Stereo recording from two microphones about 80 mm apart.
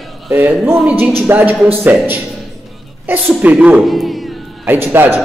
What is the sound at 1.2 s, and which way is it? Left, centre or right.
Speech, right.